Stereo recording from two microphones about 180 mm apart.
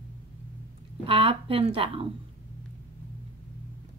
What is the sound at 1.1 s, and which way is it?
A woman's voice, 30° right (ahead or behind).